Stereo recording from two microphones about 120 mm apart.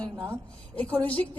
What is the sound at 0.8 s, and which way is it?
Speech, 10° left (ahead or behind).